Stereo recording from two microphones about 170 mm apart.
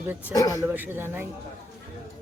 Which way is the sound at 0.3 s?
20° left (ahead or behind).